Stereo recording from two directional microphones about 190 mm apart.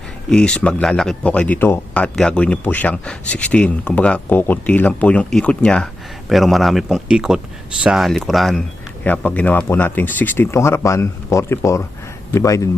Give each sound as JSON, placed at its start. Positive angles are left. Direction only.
{"t": 0.3, "sound": "speech", "side_deg": 5}